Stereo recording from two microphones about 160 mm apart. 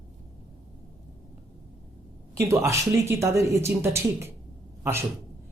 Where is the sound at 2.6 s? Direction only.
20° right (ahead or behind).